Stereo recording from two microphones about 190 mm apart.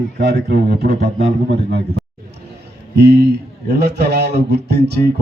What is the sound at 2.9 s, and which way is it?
A man's voice, 60° right (ahead or behind).